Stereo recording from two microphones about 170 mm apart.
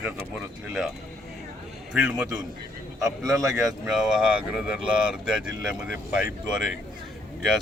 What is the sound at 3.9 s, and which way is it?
Speech, 5° right (ahead or behind).